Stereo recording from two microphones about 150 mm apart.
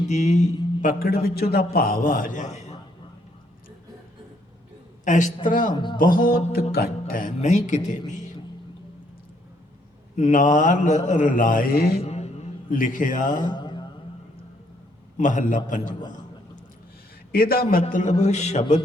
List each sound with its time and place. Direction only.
0.1 s a man's voice: 50° left (ahead or behind)
5.0 s a man's voice: 55° left (ahead or behind)
5.7 s speech: 30° left (ahead or behind)
6.0 s a sound: 65° left (ahead or behind)
6.5 s a man's voice: 90° left; by 8.0 s 55° left (ahead or behind)
10.2 s a man's voice: 55° left (ahead or behind); by 12.0 s 90° left
12.0 s mantra: 45° left (ahead or behind)
12.7 s a man's voice: 60° left (ahead or behind)
13.4 s mantra: 30° left (ahead or behind)
15.2 s a man's voice: 55° left (ahead or behind)
15.9 s a man's voice: 30° left (ahead or behind)
17.3 s a man's voice: 80° left
17.9 s a man's voice: 50° left (ahead or behind)